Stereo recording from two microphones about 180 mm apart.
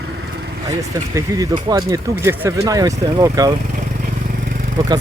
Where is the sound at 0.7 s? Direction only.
20° right (ahead or behind).